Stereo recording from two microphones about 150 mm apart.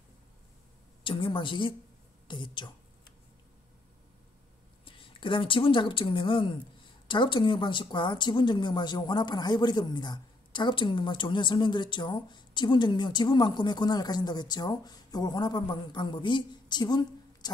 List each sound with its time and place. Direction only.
1.0 s a woman's voice: 35° left (ahead or behind)
4.8 s a woman's voice: 35° left (ahead or behind)